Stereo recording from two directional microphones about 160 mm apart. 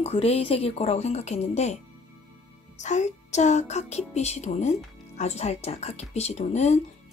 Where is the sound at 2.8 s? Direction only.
45° left (ahead or behind).